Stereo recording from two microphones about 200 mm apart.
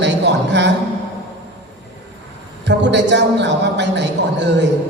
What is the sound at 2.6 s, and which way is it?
A man's voice, 60° right (ahead or behind).